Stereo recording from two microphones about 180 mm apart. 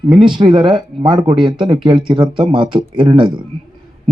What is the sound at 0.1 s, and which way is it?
A man's voice, 25° right (ahead or behind).